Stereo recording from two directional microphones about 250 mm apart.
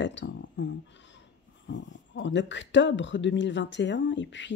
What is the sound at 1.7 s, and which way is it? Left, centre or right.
Speech, left.